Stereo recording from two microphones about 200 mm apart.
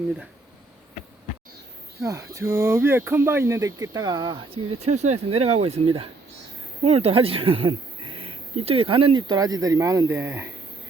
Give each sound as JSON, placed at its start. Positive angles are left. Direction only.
{"t": 2.0, "sound": "speech", "side_deg": -15}